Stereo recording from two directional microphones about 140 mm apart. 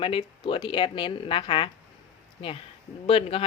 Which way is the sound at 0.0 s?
40° left (ahead or behind).